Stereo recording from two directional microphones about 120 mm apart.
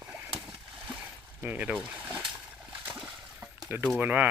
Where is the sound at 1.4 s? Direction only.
10° right (ahead or behind).